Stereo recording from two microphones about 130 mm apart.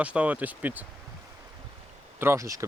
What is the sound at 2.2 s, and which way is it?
Speech, 20° right (ahead or behind).